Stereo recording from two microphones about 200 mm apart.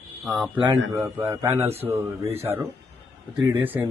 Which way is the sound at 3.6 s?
10° right (ahead or behind).